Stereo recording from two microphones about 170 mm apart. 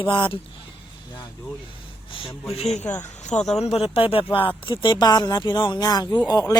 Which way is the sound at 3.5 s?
35° left (ahead or behind).